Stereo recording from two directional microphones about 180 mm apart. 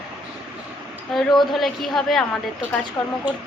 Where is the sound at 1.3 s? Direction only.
25° left (ahead or behind).